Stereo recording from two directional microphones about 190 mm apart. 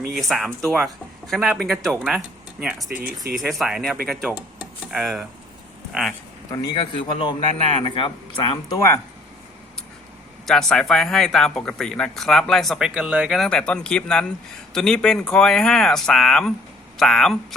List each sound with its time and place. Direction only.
0.1 s speech: centre (ahead or behind)
6.7 s a man's voice: 25° left (ahead or behind)
10.4 s speech: centre (ahead or behind)